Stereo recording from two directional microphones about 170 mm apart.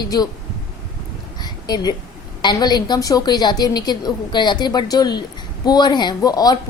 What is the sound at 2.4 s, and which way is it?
A woman's voice, 25° left (ahead or behind).